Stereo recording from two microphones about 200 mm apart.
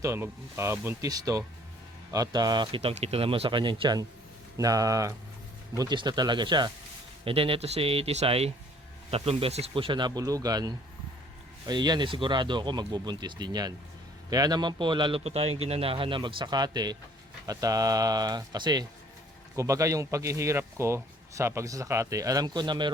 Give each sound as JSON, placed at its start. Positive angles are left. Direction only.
{"t": 0.0, "sound": "a man's voice", "side_deg": -15}